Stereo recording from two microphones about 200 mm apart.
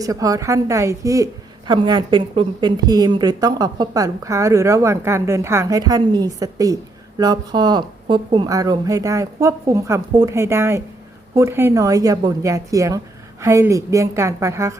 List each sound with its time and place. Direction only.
0.0 s a woman's voice: 15° right (ahead or behind)